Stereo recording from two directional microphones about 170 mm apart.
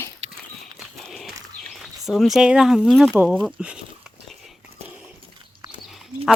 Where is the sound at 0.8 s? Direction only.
Centre (ahead or behind).